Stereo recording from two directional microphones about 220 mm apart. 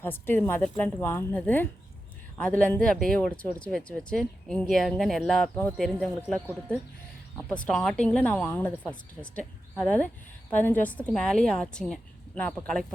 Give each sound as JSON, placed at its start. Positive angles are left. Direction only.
{"t": 0.0, "sound": "a woman's voice", "side_deg": 10}